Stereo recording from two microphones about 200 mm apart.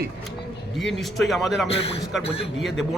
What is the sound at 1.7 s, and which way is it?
Speech, 30° left (ahead or behind).